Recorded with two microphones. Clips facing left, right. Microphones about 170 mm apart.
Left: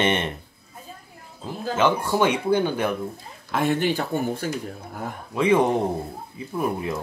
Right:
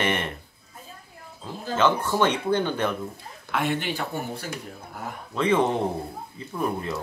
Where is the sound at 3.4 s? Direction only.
40° left (ahead or behind).